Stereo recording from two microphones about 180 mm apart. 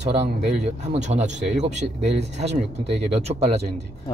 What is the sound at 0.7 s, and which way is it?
Speech, 40° right (ahead or behind).